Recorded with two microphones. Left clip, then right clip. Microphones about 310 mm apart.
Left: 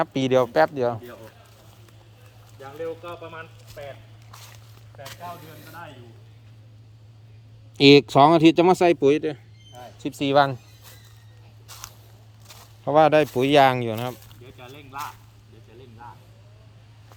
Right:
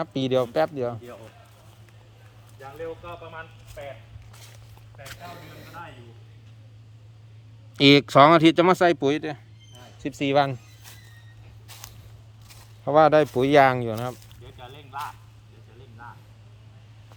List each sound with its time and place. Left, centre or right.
0.0 s speech: centre
2.6 s speech: left
4.3 s walk: centre
4.9 s a sound: centre
7.8 s speech: centre
11.7 s walk: centre
12.5 s speech: centre
14.6 s a sound: left